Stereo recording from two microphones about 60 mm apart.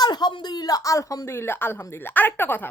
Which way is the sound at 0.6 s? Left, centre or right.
Left.